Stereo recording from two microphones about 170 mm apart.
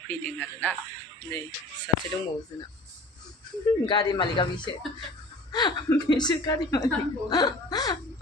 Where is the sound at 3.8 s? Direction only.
25° left (ahead or behind).